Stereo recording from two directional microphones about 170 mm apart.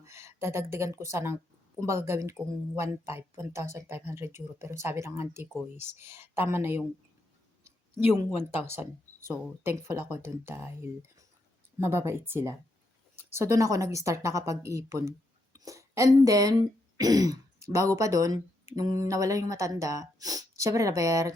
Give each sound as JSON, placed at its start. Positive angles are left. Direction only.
{"t": 0.0, "sound": "speech", "side_deg": -15}
{"t": 7.6, "sound": "a sound", "side_deg": -15}
{"t": 8.6, "sound": "speech", "side_deg": -15}